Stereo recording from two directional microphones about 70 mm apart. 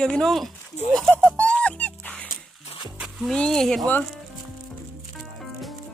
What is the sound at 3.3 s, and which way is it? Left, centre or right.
Speech, centre.